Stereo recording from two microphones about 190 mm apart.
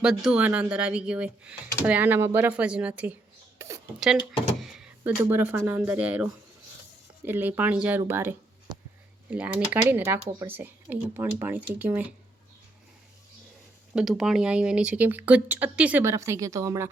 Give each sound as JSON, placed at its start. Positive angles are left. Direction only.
{"t": 0.0, "sound": "speech", "side_deg": -5}
{"t": 4.0, "sound": "speech", "side_deg": 0}
{"t": 9.9, "sound": "speech", "side_deg": -10}
{"t": 13.9, "sound": "speech", "side_deg": -5}